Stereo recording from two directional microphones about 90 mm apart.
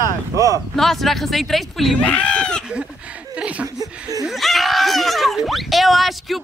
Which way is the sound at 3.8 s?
40° right (ahead or behind).